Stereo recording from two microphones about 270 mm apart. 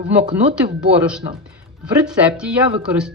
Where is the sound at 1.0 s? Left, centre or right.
Centre.